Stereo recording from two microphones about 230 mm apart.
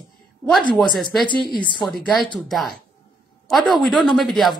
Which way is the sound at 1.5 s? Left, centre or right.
Centre.